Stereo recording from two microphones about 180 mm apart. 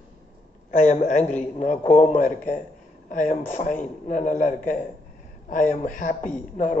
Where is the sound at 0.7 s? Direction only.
40° left (ahead or behind).